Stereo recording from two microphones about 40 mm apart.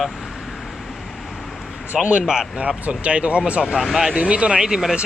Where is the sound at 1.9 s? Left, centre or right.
Centre.